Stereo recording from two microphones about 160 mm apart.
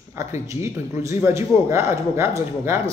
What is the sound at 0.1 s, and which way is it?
A man's voice, 15° right (ahead or behind).